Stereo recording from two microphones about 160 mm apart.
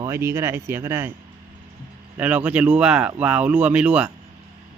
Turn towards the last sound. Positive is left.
turn(degrees=-5)  # may be behind; listen again after turning